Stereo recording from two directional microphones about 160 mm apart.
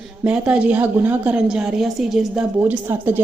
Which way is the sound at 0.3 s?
5° right (ahead or behind).